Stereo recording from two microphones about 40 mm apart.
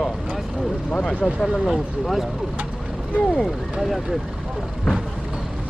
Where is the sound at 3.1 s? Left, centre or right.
Left.